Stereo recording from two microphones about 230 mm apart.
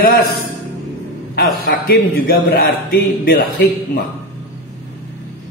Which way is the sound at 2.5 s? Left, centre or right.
Left.